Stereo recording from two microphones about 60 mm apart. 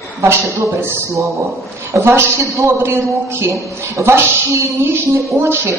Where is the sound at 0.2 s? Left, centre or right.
Right.